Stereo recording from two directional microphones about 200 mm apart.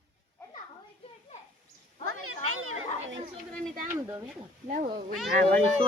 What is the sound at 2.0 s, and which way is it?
Children playing, 90° right.